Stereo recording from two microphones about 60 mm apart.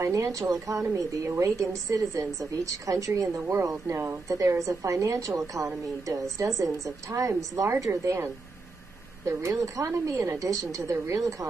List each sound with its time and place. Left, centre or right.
0.0 s a woman's voice: right
4.3 s a woman's voice: right
9.2 s a woman's voice: right